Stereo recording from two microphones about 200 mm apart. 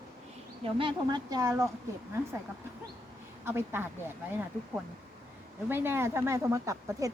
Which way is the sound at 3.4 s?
10° right (ahead or behind).